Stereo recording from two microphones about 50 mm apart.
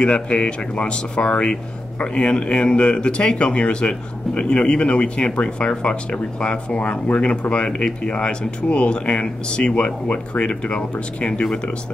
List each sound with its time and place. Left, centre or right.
0.0 s speech: left